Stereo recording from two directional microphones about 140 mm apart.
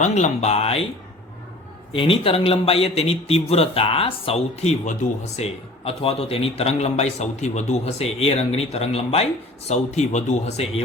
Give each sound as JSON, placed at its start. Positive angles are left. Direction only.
{"t": 0.0, "sound": "a man's voice", "side_deg": 55}
{"t": 1.9, "sound": "a man's voice", "side_deg": 40}